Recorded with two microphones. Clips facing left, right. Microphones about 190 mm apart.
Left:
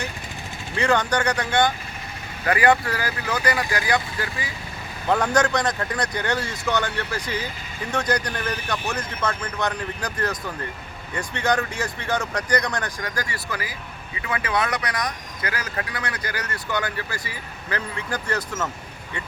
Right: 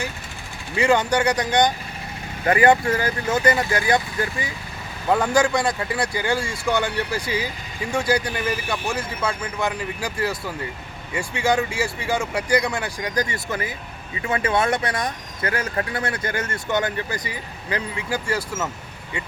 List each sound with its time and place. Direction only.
0.8 s speech: 15° right (ahead or behind)
5.0 s speech: 5° right (ahead or behind)